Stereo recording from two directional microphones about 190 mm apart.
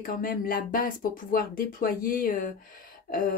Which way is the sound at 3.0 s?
50° left (ahead or behind).